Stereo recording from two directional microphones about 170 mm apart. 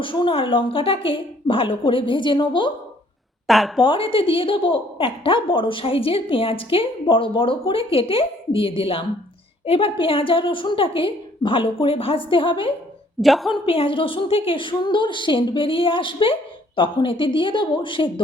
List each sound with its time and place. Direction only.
0.0 s a woman's voice: 30° left (ahead or behind)
3.4 s a woman's voice: centre (ahead or behind)
3.8 s a woman's voice: 35° left (ahead or behind)
13.2 s a woman's voice: centre (ahead or behind)
13.7 s a woman's voice: 35° left (ahead or behind)